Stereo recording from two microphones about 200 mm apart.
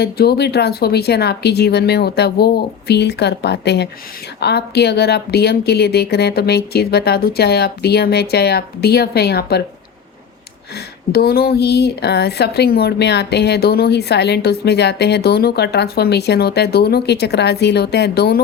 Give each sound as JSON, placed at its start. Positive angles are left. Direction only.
{"t": 0.0, "sound": "a woman's voice", "side_deg": 50}
{"t": 11.1, "sound": "a woman's voice", "side_deg": 50}